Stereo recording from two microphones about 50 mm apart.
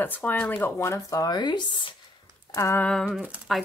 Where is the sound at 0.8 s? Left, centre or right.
Left.